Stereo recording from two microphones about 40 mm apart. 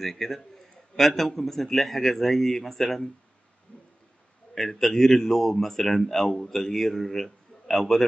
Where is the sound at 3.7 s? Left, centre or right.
Left.